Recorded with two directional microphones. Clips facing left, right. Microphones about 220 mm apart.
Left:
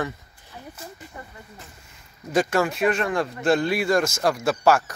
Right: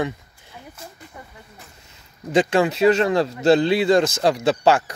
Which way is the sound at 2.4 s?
15° right (ahead or behind).